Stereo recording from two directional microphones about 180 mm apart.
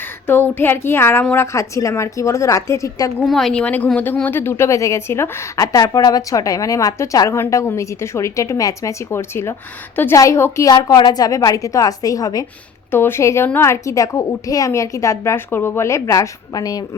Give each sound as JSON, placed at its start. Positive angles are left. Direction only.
{"t": 0.3, "sound": "speech", "side_deg": 10}
{"t": 3.2, "sound": "speech", "side_deg": 0}